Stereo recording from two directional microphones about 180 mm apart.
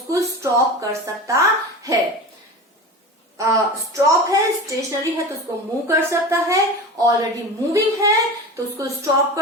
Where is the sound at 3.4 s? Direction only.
20° right (ahead or behind).